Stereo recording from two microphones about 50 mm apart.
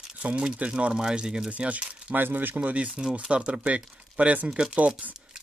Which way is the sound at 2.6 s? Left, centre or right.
Right.